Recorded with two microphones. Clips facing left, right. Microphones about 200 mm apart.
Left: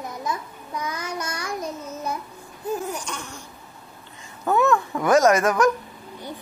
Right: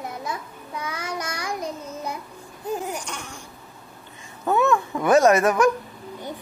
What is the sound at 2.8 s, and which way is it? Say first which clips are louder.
Babbling: even; 15° right (ahead or behind).